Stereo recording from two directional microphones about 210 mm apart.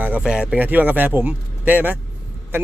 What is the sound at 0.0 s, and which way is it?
A man's voice, 5° right (ahead or behind).